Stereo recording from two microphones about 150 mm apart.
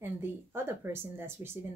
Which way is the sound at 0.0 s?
15° right (ahead or behind).